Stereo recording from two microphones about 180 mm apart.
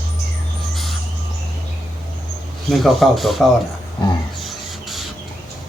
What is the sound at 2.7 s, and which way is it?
Speech, centre (ahead or behind).